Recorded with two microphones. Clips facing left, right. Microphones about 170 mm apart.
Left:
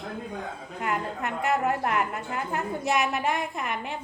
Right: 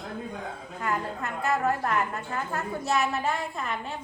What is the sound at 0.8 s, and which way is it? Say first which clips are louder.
A woman's voice: left 1 dB; 20° left (ahead or behind).